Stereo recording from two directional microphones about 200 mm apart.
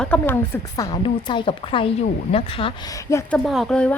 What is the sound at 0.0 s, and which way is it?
A woman's voice, 10° left (ahead or behind).